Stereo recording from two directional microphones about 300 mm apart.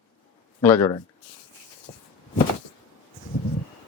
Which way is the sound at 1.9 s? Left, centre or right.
Left.